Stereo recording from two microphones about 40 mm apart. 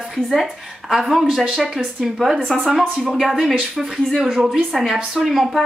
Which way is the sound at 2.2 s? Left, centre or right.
Centre.